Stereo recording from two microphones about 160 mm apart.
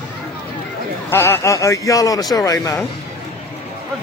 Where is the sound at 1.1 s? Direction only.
15° left (ahead or behind).